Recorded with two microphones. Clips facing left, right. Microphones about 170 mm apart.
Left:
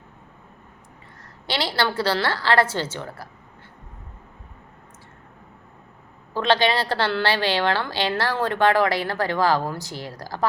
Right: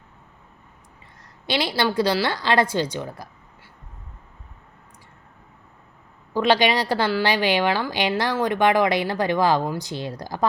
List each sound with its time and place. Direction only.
1.5 s speech: 10° right (ahead or behind)
6.3 s speech: 10° right (ahead or behind)